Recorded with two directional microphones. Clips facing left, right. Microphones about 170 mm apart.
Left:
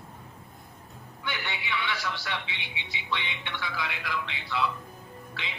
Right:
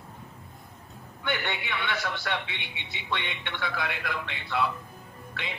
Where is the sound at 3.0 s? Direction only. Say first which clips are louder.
Right 1 dB; 50° right (ahead or behind).